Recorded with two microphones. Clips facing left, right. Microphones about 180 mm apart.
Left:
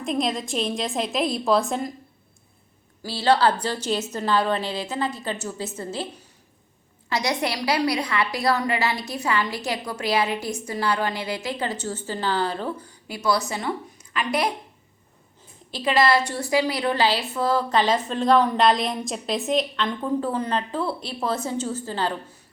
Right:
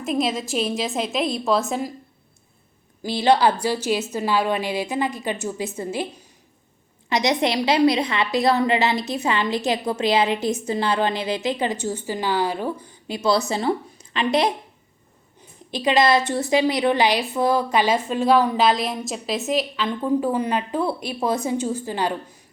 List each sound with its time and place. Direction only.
0.0 s a woman's voice: 5° right (ahead or behind)
3.0 s a woman's voice: 15° right (ahead or behind)
7.1 s a woman's voice: 20° right (ahead or behind)